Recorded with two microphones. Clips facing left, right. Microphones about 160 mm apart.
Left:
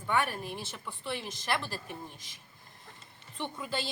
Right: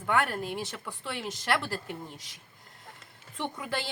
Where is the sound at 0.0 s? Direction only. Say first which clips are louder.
Right 3 dB; 75° right (ahead or behind).